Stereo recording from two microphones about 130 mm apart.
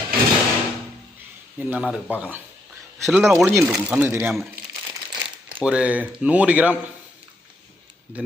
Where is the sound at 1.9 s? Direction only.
10° right (ahead or behind).